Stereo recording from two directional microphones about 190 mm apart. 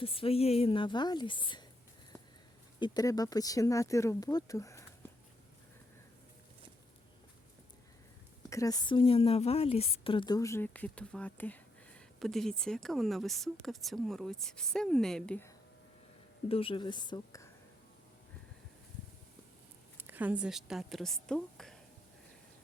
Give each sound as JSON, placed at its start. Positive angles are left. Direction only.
{"t": 0.0, "sound": "a woman's voice", "side_deg": 30}
{"t": 2.7, "sound": "speech", "side_deg": 20}
{"t": 8.4, "sound": "a woman's voice", "side_deg": 15}
{"t": 16.5, "sound": "a woman's voice", "side_deg": 30}
{"t": 20.0, "sound": "a woman's voice", "side_deg": -10}